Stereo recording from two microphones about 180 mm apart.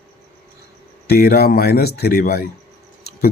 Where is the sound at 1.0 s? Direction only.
60° left (ahead or behind).